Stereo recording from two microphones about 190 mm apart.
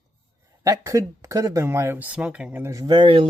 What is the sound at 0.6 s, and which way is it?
Speech, 15° right (ahead or behind).